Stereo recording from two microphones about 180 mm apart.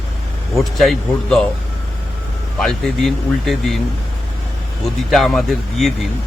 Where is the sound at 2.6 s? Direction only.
Centre (ahead or behind).